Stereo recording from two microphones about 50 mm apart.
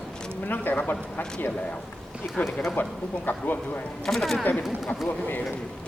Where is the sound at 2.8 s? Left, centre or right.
Left.